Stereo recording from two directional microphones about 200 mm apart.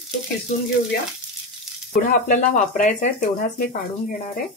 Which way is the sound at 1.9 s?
40° left (ahead or behind).